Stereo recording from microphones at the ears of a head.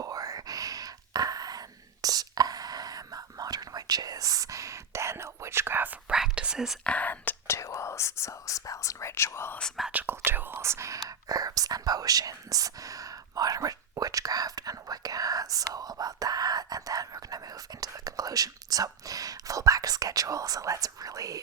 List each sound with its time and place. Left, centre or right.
0.0 s a sound: right
7.3 s whispering: left
10.1 s whispering: right